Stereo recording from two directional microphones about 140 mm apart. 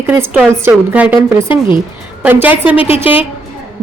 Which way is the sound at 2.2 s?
15° right (ahead or behind).